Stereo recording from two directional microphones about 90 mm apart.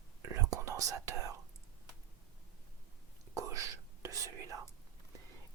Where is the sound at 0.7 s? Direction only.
40° right (ahead or behind).